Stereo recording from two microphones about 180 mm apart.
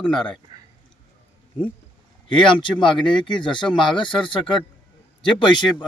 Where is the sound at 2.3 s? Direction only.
25° left (ahead or behind).